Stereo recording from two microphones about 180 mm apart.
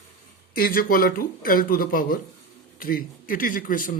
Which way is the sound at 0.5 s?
55° left (ahead or behind).